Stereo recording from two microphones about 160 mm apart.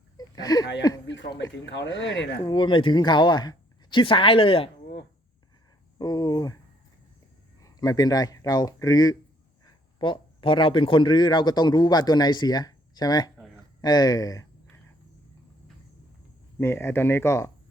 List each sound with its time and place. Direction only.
0.2 s a sound: 25° left (ahead or behind)
0.8 s speech: 25° left (ahead or behind)
1.0 s speech: 90° left
2.5 s speech: 30° left (ahead or behind)
6.0 s speech: 25° left (ahead or behind)
7.6 s a man's voice: 20° left (ahead or behind)
16.6 s speech: 15° left (ahead or behind)